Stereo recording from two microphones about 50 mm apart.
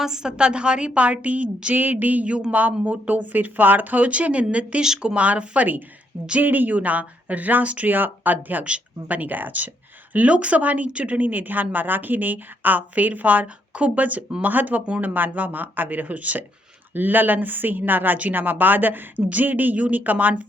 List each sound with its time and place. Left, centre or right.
0.0 s a woman's voice: centre
4.8 s speech: centre
5.1 s a woman's voice: right